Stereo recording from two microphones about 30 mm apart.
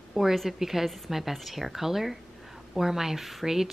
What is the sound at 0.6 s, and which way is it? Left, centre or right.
Speech, centre.